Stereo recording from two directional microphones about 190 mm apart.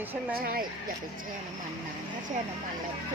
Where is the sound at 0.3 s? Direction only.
50° right (ahead or behind).